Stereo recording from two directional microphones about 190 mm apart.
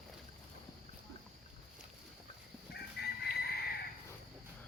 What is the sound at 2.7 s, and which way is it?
Chicken, 55° left (ahead or behind).